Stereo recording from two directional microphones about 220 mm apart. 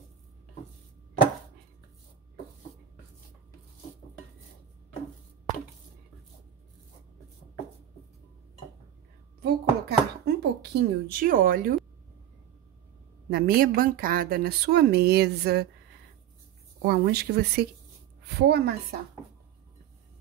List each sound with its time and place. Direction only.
9.4 s a sound: 45° right (ahead or behind)
13.3 s a woman's voice: 40° right (ahead or behind)
16.8 s a woman's voice: 45° right (ahead or behind)